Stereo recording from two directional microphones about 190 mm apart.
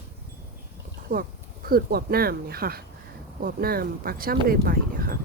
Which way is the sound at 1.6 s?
55° right (ahead or behind).